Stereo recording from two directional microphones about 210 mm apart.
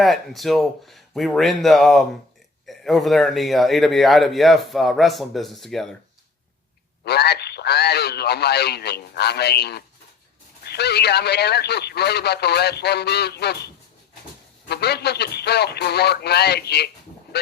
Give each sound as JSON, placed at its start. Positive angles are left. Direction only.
{"t": 0.0, "sound": "a man's voice", "side_deg": 0}
{"t": 7.0, "sound": "speech", "side_deg": 50}
{"t": 14.7, "sound": "speech", "side_deg": 50}